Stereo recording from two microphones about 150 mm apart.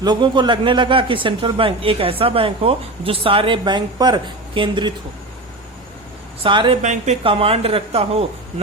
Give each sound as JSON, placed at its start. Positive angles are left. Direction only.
{"t": 0.0, "sound": "speech", "side_deg": -30}
{"t": 6.4, "sound": "speech", "side_deg": -35}
{"t": 6.8, "sound": "speech", "side_deg": -50}
{"t": 7.3, "sound": "speech", "side_deg": -40}